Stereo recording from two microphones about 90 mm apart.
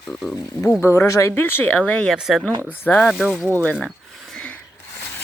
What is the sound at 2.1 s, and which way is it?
Speech, 5° right (ahead or behind).